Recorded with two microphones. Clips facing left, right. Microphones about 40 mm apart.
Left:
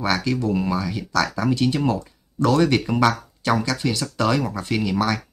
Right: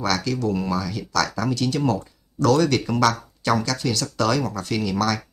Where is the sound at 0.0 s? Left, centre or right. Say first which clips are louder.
Left 1 dB; left.